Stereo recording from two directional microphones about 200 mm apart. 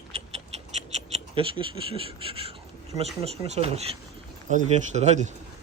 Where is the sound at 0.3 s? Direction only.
30° right (ahead or behind).